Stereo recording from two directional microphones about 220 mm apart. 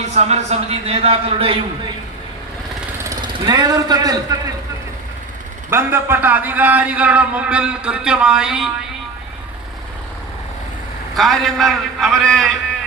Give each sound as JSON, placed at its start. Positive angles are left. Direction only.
{"t": 0.0, "sound": "speech", "side_deg": -30}
{"t": 3.0, "sound": "speech", "side_deg": -15}
{"t": 5.7, "sound": "a man's voice", "side_deg": -10}
{"t": 11.2, "sound": "a man's voice", "side_deg": 0}